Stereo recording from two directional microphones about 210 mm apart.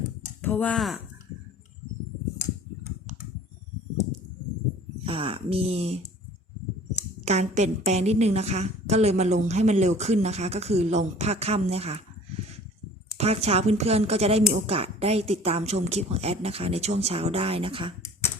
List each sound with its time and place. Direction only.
0.4 s speech: 5° left (ahead or behind)
5.0 s a woman's voice: 25° right (ahead or behind)
7.3 s a woman's voice: 30° right (ahead or behind)
13.1 s a woman's voice: 30° right (ahead or behind)